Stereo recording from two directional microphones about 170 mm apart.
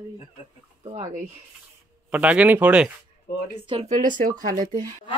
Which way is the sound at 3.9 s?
50° right (ahead or behind).